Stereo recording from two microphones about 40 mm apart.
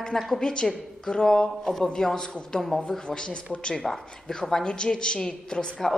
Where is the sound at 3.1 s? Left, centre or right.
Left.